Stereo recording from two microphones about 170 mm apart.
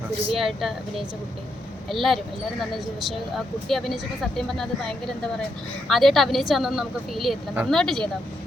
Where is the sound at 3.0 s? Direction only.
Centre (ahead or behind).